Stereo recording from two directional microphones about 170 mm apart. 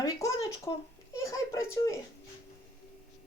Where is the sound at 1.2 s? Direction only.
15° left (ahead or behind).